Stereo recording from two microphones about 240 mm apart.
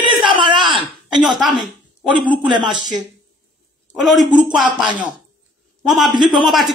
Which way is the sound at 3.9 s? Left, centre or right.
Centre.